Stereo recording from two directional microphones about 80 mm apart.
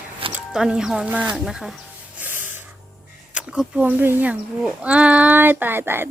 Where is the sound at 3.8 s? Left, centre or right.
Right.